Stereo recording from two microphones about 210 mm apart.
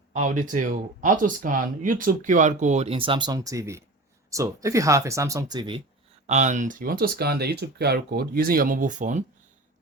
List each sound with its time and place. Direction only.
0.1 s speech: 35° right (ahead or behind); by 5.8 s 20° right (ahead or behind)
6.2 s speech: 35° right (ahead or behind)